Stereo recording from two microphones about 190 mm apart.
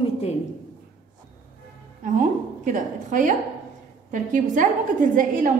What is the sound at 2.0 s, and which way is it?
A woman's voice, 40° right (ahead or behind).